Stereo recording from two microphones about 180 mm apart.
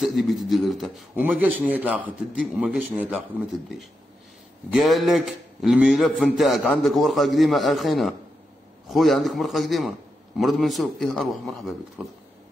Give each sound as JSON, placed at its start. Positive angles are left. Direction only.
{"t": 0.0, "sound": "a man's voice", "side_deg": 0}
{"t": 4.7, "sound": "a man's voice", "side_deg": 0}